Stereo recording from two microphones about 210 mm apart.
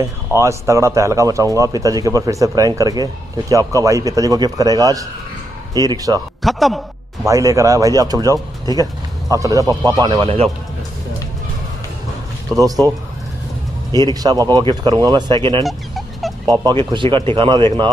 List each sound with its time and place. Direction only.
0.0 s speech: 15° right (ahead or behind)
6.4 s a man's voice: centre (ahead or behind)
7.2 s speech: 15° right (ahead or behind)
12.5 s speech: 15° right (ahead or behind)
14.2 s speech: 20° right (ahead or behind)
15.6 s dog: centre (ahead or behind)
16.4 s speech: 15° right (ahead or behind)